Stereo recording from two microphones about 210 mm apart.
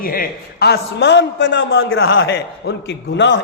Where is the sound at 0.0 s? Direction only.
45° left (ahead or behind).